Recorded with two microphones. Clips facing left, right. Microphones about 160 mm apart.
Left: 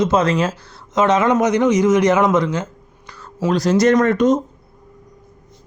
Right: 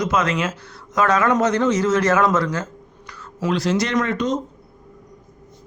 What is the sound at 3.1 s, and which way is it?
Speech, 35° left (ahead or behind).